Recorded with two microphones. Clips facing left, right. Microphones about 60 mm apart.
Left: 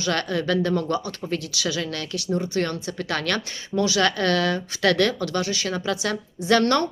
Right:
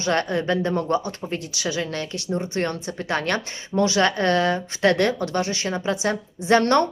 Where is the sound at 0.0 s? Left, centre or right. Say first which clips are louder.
Right 2 dB; right.